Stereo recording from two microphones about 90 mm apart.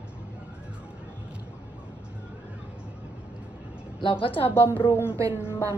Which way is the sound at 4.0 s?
70° left (ahead or behind).